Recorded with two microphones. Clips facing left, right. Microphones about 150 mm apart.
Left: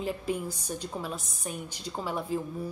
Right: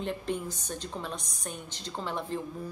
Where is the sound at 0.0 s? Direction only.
10° left (ahead or behind).